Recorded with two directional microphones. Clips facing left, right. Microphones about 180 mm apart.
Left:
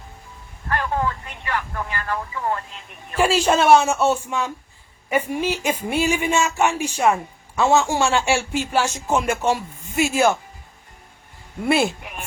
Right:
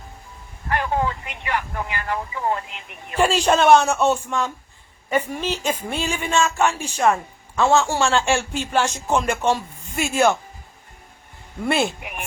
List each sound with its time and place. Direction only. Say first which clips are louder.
0.7 s speech: right 1 dB; 15° right (ahead or behind)
3.2 s speech: even; 5° left (ahead or behind)
11.6 s speech: left 2 dB; 5° left (ahead or behind)